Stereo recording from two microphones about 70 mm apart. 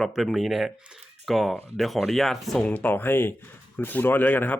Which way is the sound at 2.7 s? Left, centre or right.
Left.